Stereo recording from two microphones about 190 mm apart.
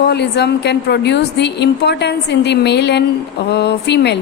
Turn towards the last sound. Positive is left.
turn(degrees=60)  # may be behind; listen again after turning